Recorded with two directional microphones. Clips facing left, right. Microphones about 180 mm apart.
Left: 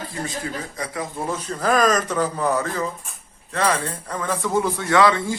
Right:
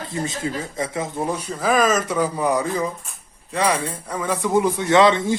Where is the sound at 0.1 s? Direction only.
25° right (ahead or behind).